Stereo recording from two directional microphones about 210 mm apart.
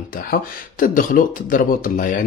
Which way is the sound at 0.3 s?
40° left (ahead or behind).